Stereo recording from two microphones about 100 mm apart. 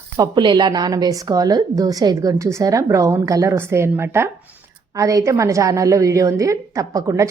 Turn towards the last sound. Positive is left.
turn(degrees=-35)  # may be behind; listen again after turning